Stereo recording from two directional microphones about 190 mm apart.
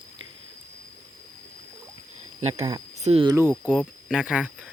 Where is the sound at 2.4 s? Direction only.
35° right (ahead or behind).